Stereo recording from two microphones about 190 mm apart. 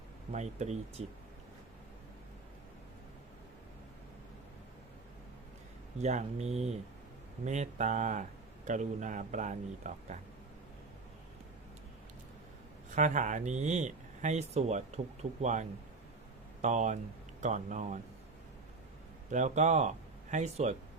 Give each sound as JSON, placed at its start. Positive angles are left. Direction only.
{"t": 0.3, "sound": "speech", "side_deg": -35}
{"t": 6.0, "sound": "speech", "side_deg": -35}
{"t": 13.0, "sound": "speech", "side_deg": -40}
{"t": 19.3, "sound": "speech", "side_deg": -40}